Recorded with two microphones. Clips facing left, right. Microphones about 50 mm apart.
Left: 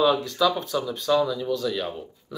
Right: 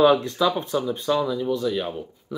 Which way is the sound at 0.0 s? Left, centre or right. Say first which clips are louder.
Right 4 dB; right.